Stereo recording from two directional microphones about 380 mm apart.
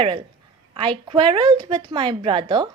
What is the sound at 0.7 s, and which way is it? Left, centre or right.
A woman's voice, centre.